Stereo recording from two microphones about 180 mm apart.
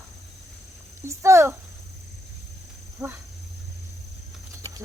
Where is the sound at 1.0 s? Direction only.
15° right (ahead or behind).